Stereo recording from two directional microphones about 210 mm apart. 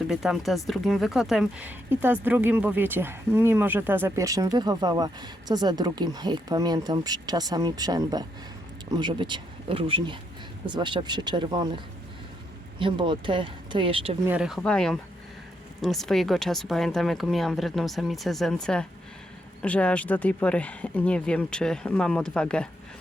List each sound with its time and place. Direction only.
0.1 s speech: centre (ahead or behind); by 11.7 s 20° right (ahead or behind)
12.8 s speech: 25° right (ahead or behind)
14.3 s speech: 5° right (ahead or behind)